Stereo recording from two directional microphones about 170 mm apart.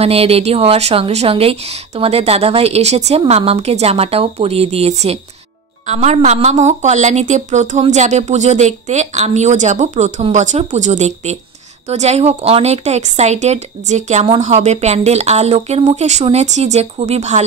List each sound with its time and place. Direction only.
0.0 s speech: 35° right (ahead or behind)